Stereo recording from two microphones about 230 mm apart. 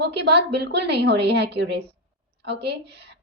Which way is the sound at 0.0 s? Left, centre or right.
Right.